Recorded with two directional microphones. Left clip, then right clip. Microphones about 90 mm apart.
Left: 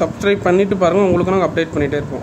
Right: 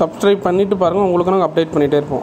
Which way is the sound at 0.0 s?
40° right (ahead or behind).